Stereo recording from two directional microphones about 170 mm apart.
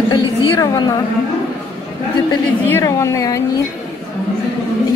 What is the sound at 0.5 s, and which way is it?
Speech, 25° left (ahead or behind).